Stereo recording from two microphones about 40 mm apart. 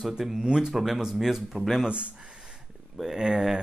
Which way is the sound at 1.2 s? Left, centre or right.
Centre.